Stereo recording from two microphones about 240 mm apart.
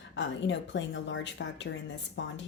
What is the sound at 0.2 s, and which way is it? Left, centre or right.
Speech, left.